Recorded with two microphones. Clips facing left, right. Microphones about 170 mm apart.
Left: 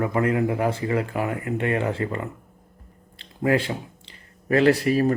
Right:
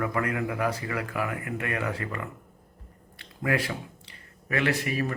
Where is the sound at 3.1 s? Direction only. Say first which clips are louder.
Left 6 dB; 30° left (ahead or behind).